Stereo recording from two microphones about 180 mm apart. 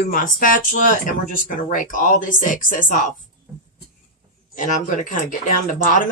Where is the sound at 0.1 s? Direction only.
50° left (ahead or behind).